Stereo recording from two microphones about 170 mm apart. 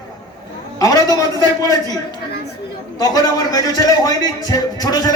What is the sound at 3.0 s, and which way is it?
A man's voice, 25° left (ahead or behind).